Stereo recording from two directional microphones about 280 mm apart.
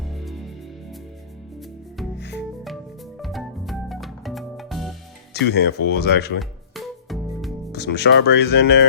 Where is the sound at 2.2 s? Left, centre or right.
Left.